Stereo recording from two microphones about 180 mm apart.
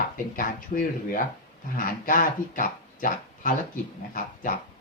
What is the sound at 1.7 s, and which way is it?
Speech, 50° left (ahead or behind).